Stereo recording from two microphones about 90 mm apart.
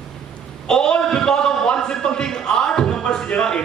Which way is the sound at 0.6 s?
10° left (ahead or behind).